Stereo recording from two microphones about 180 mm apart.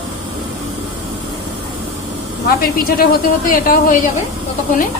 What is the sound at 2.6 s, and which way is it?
A man's voice, 55° left (ahead or behind).